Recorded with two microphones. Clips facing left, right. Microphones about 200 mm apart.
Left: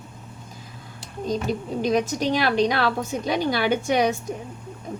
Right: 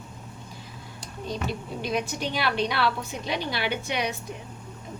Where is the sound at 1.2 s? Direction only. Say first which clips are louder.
Left 6 dB; 45° left (ahead or behind).